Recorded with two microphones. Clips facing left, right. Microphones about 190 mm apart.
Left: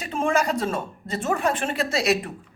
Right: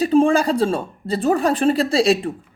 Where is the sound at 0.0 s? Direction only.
35° right (ahead or behind).